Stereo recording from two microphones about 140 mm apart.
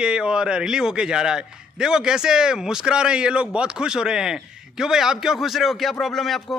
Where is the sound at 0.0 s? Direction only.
5° right (ahead or behind).